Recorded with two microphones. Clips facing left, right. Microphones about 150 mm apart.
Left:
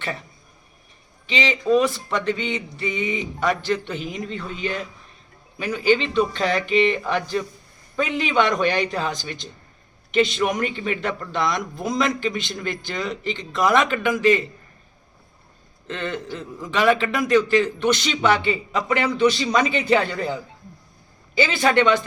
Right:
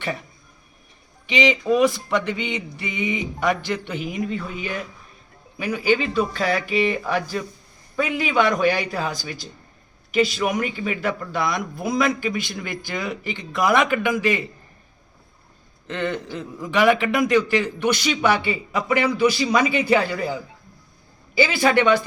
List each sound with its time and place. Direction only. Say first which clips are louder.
1.3 s a man's voice: even; 15° right (ahead or behind)
15.9 s a man's voice: right 2 dB; 15° right (ahead or behind)